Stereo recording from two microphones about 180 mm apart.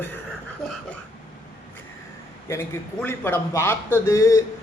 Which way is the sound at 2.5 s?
15° left (ahead or behind).